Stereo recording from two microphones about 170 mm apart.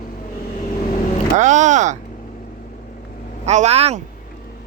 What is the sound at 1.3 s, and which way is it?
Speech, 45° right (ahead or behind).